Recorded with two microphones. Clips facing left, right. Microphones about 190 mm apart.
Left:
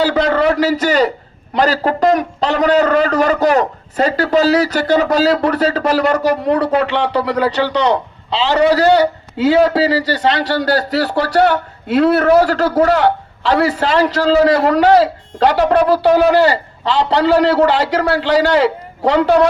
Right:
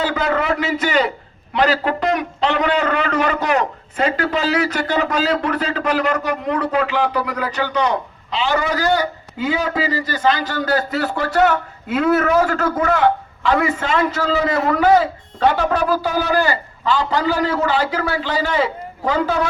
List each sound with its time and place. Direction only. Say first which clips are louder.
0.0 s a man's voice: left 6 dB; 35° left (ahead or behind)
8.7 s a man's voice: left 7 dB; 70° left (ahead or behind)
13.1 s a sound: left 2 dB; 35° left (ahead or behind)
13.6 s a man's voice: left 5 dB; 85° left
17.7 s a man's voice: left 5 dB; 90° left